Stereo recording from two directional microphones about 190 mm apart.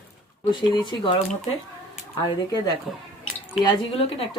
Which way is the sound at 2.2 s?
20° left (ahead or behind).